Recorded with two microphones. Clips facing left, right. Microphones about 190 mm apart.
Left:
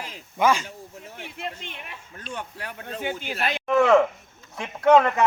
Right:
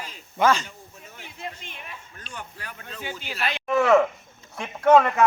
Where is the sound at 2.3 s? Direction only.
65° left (ahead or behind).